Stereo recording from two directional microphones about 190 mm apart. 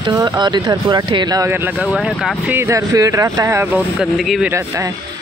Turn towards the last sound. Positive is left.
turn(degrees=0)  # may be behind; listen again after turning